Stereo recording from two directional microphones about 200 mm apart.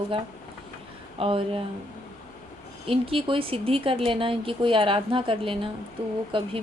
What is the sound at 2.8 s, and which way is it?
Speech, 30° right (ahead or behind).